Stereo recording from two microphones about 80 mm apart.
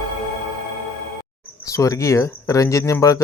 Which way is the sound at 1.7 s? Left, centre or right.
Left.